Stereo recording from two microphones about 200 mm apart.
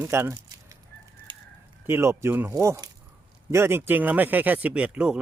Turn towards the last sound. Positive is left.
turn(degrees=-5)  # may be behind; listen again after turning